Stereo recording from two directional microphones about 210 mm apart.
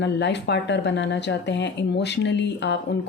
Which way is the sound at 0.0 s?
55° left (ahead or behind).